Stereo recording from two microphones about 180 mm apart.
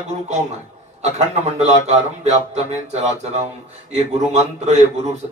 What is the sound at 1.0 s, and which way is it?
Speech, 40° right (ahead or behind).